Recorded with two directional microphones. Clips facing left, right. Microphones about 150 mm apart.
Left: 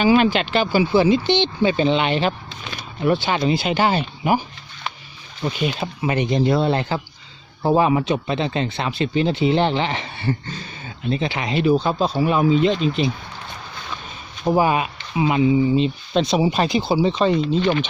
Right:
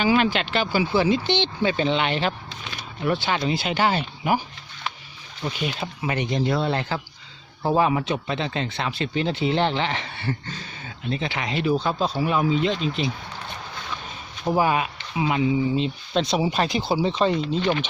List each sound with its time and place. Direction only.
0.0 s speech: 20° left (ahead or behind)
5.4 s speech: 20° left (ahead or behind)
14.4 s speech: 20° left (ahead or behind)
15.7 s speech: 5° left (ahead or behind)
17.6 s speech: 15° right (ahead or behind)